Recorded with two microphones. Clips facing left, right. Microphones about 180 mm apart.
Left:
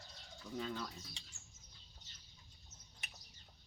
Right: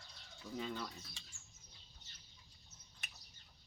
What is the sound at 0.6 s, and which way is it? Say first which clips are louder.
Speech: left 1 dB; 5° right (ahead or behind).